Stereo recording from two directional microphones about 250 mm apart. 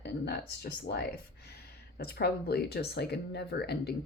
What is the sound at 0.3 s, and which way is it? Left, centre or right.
Speech, left.